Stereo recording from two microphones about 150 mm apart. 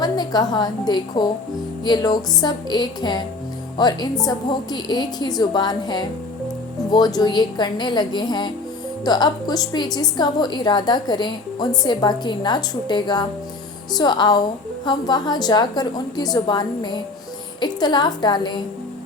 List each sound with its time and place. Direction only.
0.0 s a woman's voice: 25° left (ahead or behind)